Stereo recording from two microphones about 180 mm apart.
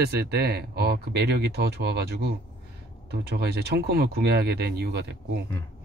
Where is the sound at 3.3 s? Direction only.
60° right (ahead or behind).